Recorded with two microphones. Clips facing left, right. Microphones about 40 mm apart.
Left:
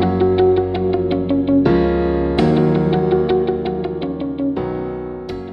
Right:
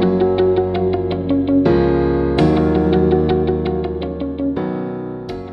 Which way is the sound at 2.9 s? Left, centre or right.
Centre.